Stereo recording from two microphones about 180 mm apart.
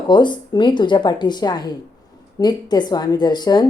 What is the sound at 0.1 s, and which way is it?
A woman's voice, 25° left (ahead or behind).